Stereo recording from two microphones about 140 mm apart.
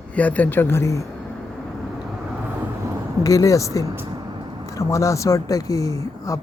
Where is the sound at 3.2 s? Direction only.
25° left (ahead or behind).